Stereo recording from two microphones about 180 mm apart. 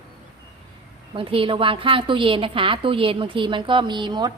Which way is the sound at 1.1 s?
30° right (ahead or behind).